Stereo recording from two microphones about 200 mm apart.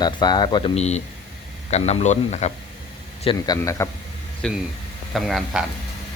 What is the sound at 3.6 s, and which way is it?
Speech, 15° left (ahead or behind).